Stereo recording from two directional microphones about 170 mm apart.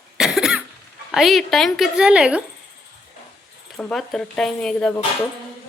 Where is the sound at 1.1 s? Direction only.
Centre (ahead or behind).